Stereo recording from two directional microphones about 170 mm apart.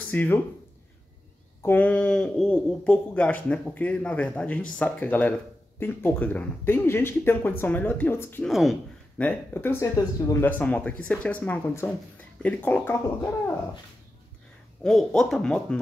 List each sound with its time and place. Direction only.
0.1 s speech: 10° left (ahead or behind)
1.6 s speech: 10° left (ahead or behind)
8.5 s speech: centre (ahead or behind)
9.2 s speech: 10° left (ahead or behind)
14.8 s speech: 5° left (ahead or behind)